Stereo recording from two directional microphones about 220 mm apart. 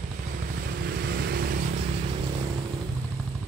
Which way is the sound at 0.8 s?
45° right (ahead or behind).